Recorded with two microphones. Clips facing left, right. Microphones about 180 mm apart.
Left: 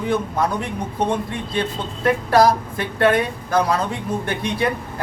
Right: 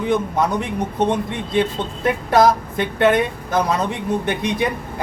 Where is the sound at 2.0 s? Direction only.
20° right (ahead or behind).